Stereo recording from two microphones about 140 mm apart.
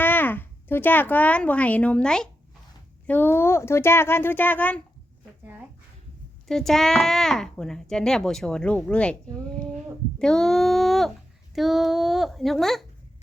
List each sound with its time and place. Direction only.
0.0 s speech: 15° left (ahead or behind)
6.5 s speech: centre (ahead or behind)